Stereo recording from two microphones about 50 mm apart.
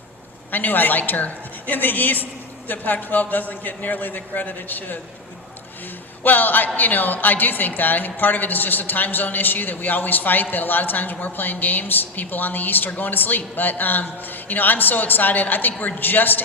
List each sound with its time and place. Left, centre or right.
0.5 s speech: left
6.2 s speech: left